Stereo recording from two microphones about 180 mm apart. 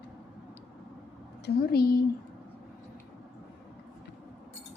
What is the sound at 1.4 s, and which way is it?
Speech, 60° left (ahead or behind).